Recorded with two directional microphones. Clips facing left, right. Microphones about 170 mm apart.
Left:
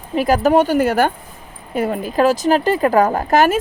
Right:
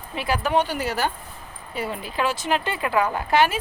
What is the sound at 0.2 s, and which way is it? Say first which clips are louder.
Speech: left 9 dB; 45° left (ahead or behind).